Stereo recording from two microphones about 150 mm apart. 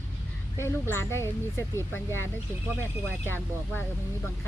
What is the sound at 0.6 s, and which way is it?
Speech, 15° left (ahead or behind).